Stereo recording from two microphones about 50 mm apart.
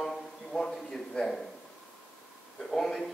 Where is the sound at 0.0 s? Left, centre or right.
Centre.